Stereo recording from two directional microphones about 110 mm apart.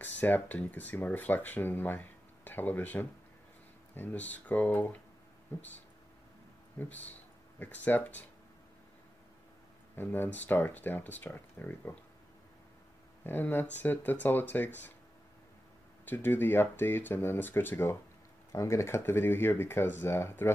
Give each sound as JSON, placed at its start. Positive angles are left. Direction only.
{"t": 0.0, "sound": "speech", "side_deg": 15}
{"t": 6.8, "sound": "speech", "side_deg": 15}
{"t": 9.9, "sound": "speech", "side_deg": 20}
{"t": 13.2, "sound": "speech", "side_deg": 15}
{"t": 16.1, "sound": "speech", "side_deg": 20}